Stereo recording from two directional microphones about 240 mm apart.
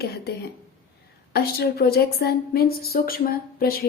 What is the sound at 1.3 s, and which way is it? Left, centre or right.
A woman's voice, left.